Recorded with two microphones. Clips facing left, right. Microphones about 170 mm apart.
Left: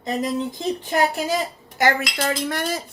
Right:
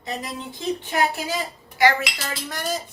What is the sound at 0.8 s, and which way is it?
Speech, 40° left (ahead or behind).